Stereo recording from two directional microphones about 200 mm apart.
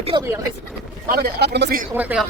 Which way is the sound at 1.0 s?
50° right (ahead or behind).